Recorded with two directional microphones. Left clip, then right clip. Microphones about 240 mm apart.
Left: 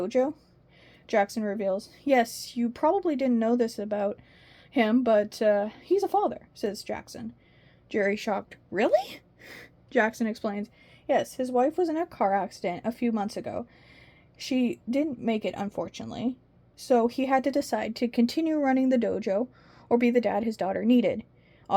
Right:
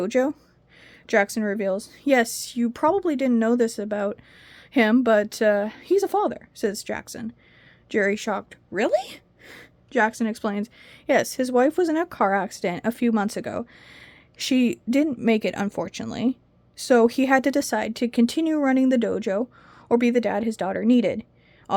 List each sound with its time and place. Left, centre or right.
0.0 s a woman's voice: right